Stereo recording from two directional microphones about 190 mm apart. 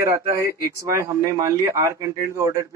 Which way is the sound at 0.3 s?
15° right (ahead or behind).